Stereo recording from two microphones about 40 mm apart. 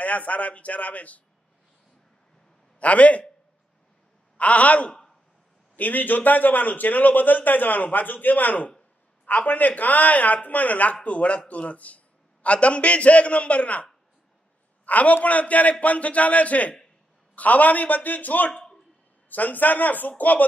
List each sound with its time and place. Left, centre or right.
0.0 s speech: left
2.8 s speech: left
4.4 s speech: left
5.8 s a man's voice: left
14.9 s a man's voice: left